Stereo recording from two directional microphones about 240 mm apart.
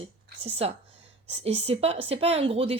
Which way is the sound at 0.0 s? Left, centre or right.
Right.